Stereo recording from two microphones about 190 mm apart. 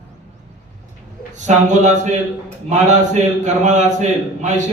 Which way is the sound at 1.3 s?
40° right (ahead or behind).